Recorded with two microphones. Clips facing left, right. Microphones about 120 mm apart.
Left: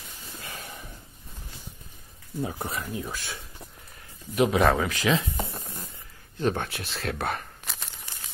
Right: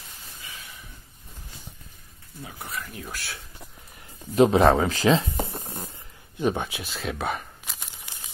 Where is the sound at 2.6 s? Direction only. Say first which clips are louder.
Left 4 dB; 20° left (ahead or behind).